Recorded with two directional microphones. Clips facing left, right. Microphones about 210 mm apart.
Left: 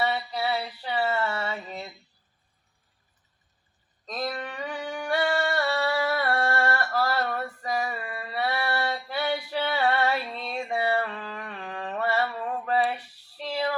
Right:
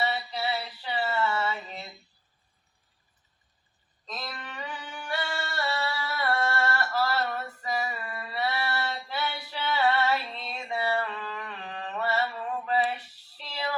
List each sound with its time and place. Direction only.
0.1 s female singing: 55° left (ahead or behind)
0.6 s a sound: 45° left (ahead or behind)
4.0 s singing: 55° left (ahead or behind)
6.7 s a sound: 55° left (ahead or behind)
7.3 s female singing: 40° left (ahead or behind)
7.9 s a sound: 55° left (ahead or behind)
9.5 s female singing: 55° left (ahead or behind)
9.9 s music: 55° left (ahead or behind)
10.9 s mantra: 40° left (ahead or behind); by 13.7 s 55° left (ahead or behind)